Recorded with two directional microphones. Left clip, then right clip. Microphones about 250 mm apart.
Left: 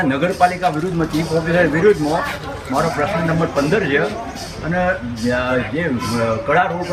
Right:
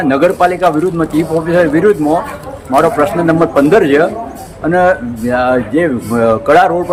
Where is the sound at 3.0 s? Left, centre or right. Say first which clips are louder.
Right 8 dB; centre.